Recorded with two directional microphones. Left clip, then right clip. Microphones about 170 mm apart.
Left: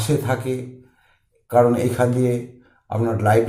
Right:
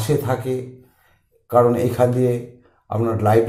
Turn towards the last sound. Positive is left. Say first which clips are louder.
# right 1 dB
turn(degrees=-25)  # may be behind; listen again after turning